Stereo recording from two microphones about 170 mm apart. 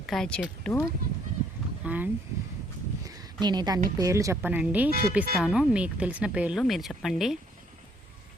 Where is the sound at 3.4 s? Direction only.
25° right (ahead or behind); by 4.9 s 10° right (ahead or behind).